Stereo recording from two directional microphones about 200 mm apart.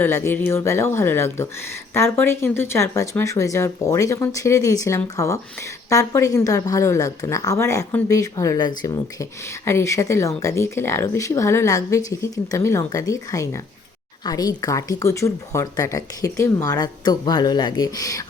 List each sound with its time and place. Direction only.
0.0 s speech: 10° left (ahead or behind)